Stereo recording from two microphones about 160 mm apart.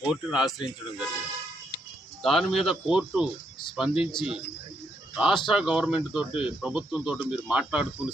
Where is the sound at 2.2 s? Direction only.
Centre (ahead or behind).